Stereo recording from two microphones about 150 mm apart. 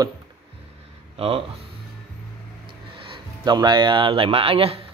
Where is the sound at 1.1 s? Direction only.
40° right (ahead or behind).